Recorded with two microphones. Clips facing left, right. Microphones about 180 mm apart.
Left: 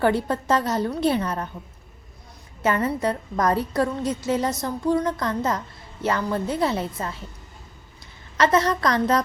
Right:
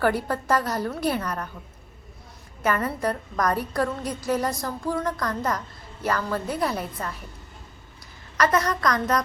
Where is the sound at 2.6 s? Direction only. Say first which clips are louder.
Left 2 dB; 25° left (ahead or behind).